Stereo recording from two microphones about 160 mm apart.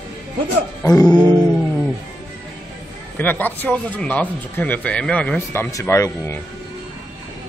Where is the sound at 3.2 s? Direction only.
10° left (ahead or behind).